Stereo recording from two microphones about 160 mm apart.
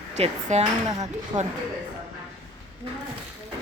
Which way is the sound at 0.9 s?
25° right (ahead or behind).